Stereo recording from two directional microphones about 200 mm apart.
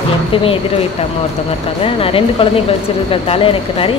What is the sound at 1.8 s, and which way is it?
A woman's voice, 30° left (ahead or behind).